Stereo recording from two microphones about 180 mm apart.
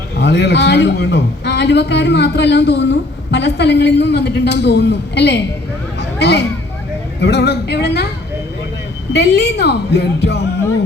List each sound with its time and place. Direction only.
0.2 s a man's voice: 70° left (ahead or behind)
6.0 s a sound: 65° left (ahead or behind)
7.2 s a man's voice: 65° left (ahead or behind)
9.1 s a man's voice: 70° left (ahead or behind)